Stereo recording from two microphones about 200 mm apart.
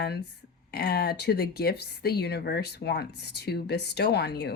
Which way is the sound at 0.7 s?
50° left (ahead or behind).